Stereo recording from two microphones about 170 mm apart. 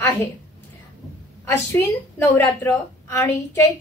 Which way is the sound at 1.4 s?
15° left (ahead or behind).